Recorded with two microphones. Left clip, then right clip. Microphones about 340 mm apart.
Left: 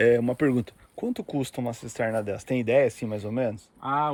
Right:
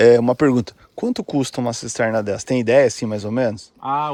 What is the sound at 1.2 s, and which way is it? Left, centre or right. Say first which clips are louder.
Speech: right 8 dB; right.